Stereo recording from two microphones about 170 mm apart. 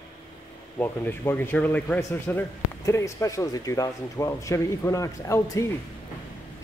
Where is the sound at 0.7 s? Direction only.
10° left (ahead or behind).